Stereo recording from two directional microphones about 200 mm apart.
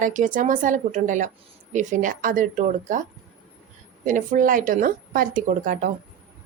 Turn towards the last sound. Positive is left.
turn(degrees=-40)  # may be behind; listen again after turning